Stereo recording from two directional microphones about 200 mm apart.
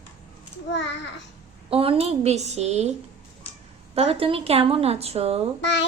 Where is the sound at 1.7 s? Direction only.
30° right (ahead or behind).